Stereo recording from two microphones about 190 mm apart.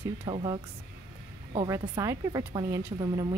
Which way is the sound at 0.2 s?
25° right (ahead or behind).